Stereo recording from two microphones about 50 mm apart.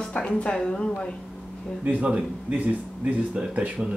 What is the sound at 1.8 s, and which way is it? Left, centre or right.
Speech, right.